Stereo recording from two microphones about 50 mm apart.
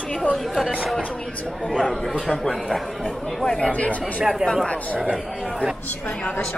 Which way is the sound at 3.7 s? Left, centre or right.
Left.